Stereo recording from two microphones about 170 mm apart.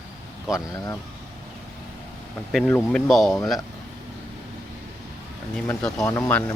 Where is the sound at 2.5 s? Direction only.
Centre (ahead or behind).